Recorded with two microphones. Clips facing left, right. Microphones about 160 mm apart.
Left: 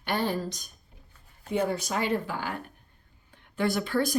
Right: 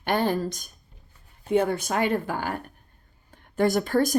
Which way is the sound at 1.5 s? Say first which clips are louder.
Right 5 dB; 55° right (ahead or behind).